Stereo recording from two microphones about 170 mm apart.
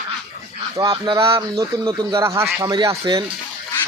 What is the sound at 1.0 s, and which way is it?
Speech, 30° right (ahead or behind).